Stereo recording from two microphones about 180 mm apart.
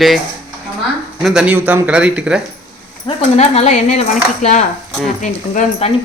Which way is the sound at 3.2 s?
35° left (ahead or behind).